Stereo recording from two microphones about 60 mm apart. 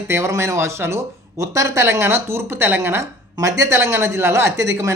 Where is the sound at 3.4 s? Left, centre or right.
Right.